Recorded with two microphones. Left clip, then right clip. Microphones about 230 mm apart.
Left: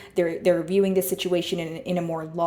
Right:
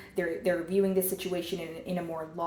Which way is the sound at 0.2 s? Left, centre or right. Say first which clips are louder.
Left 8 dB; left.